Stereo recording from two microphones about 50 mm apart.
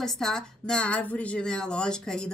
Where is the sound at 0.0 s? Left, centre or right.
Centre; by 1.4 s left.